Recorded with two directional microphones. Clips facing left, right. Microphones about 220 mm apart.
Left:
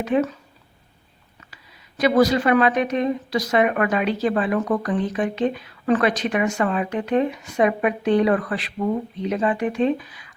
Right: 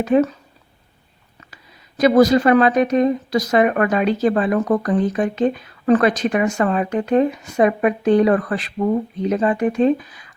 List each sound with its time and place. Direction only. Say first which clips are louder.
0.0 s speech: right 5 dB; 40° right (ahead or behind)
2.0 s a woman's voice: right 4 dB; 40° right (ahead or behind)